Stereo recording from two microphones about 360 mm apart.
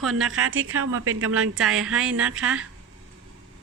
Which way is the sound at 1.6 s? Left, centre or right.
Centre.